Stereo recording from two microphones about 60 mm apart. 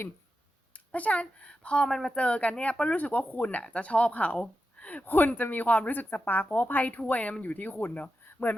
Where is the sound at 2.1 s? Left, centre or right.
Centre.